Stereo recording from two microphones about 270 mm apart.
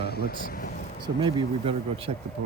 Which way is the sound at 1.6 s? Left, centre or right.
Right.